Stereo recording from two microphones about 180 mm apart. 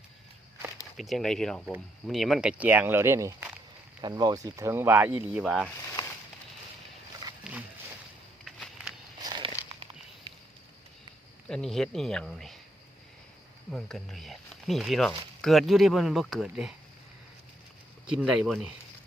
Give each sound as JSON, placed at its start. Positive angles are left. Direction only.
{"t": 0.9, "sound": "speech", "side_deg": 0}
{"t": 5.5, "sound": "speech", "side_deg": 5}
{"t": 7.5, "sound": "a sound", "side_deg": -5}
{"t": 8.4, "sound": "walk", "side_deg": 0}
{"t": 9.2, "sound": "a sound", "side_deg": -25}
{"t": 11.4, "sound": "speech", "side_deg": 5}
{"t": 13.7, "sound": "speech", "side_deg": 0}
{"t": 18.1, "sound": "speech", "side_deg": -5}